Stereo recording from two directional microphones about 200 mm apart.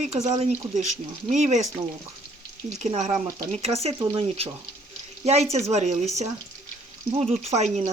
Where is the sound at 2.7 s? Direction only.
35° right (ahead or behind).